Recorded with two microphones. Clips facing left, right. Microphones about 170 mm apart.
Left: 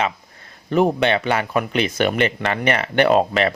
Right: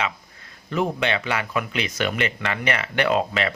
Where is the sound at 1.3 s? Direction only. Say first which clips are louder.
Left 5 dB; 35° left (ahead or behind).